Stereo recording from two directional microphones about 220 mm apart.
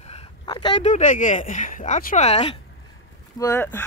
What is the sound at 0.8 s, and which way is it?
Speech, 35° left (ahead or behind).